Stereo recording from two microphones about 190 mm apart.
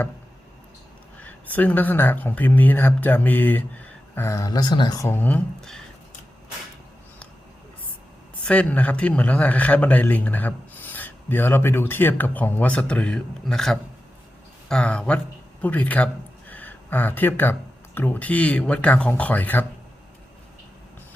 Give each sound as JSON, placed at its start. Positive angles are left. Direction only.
{"t": 1.2, "sound": "a man's voice", "side_deg": 10}
{"t": 5.0, "sound": "a man's voice", "side_deg": 10}
{"t": 8.4, "sound": "a man's voice", "side_deg": 5}